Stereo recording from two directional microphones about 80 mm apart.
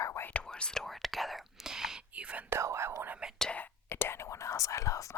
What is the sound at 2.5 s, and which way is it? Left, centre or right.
Speech, right.